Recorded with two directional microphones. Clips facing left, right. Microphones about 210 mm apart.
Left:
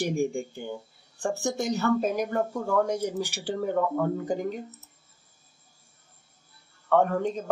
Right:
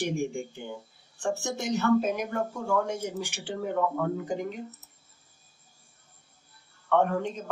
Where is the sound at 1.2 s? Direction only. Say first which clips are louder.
Left 2 dB; 35° left (ahead or behind).